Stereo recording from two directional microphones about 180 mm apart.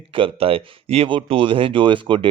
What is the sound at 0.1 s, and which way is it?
Speech, 30° right (ahead or behind).